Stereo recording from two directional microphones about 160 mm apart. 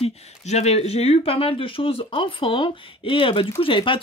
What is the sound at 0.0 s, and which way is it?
Speech, 45° left (ahead or behind).